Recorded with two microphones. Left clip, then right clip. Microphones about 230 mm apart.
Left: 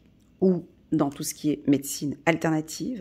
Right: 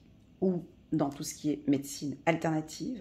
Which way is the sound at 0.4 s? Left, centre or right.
Left.